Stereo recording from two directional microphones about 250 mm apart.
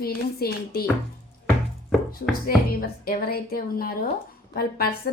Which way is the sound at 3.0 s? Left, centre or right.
Left.